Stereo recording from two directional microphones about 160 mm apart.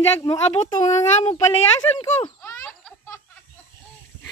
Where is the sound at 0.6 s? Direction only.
45° left (ahead or behind).